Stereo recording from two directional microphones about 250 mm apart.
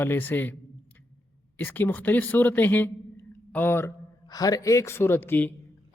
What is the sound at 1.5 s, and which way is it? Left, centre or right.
A man's voice, centre.